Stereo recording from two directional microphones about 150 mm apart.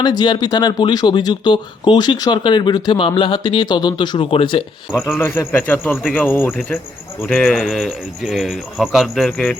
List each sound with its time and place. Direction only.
0.0 s speech: 30° left (ahead or behind)
4.9 s speech: 15° left (ahead or behind)
7.3 s speech: 5° left (ahead or behind)